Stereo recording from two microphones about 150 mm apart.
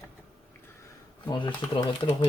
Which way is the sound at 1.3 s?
35° left (ahead or behind).